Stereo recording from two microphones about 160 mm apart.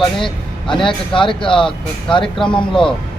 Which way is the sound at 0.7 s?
30° left (ahead or behind).